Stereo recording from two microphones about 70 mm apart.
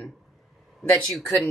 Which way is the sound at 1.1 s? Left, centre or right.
Centre.